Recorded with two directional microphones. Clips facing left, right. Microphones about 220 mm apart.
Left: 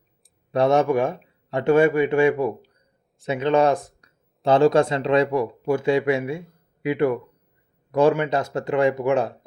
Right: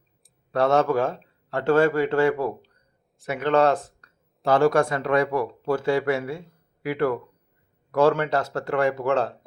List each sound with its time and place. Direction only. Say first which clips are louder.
0.5 s speech: left 2 dB; 15° left (ahead or behind)